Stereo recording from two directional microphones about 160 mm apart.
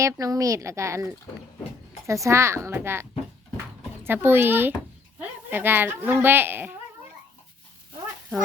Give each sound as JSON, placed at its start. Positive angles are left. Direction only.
{"t": 0.0, "sound": "speech", "side_deg": -20}